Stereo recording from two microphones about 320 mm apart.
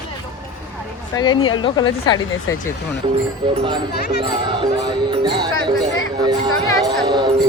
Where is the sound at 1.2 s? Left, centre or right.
Centre.